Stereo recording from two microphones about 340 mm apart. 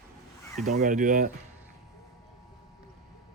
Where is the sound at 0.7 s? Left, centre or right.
Right.